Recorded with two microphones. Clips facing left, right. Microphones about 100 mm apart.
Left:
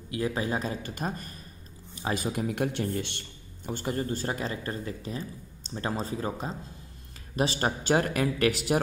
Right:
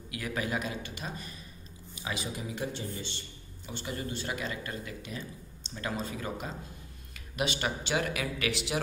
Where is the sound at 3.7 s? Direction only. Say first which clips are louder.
Left 7 dB; 45° left (ahead or behind).